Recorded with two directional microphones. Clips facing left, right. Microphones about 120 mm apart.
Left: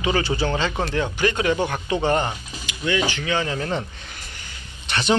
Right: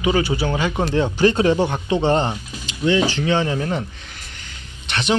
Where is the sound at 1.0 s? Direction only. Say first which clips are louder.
Right 6 dB; 35° right (ahead or behind).